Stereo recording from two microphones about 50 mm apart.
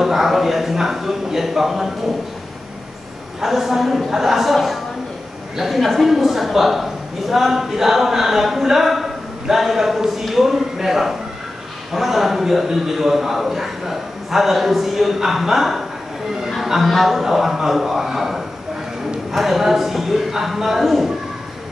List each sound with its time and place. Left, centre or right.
0.0 s speech: centre
3.3 s a woman's voice: centre